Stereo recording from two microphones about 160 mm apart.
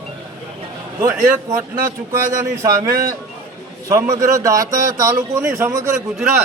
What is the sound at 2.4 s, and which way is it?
A man's voice, 20° right (ahead or behind).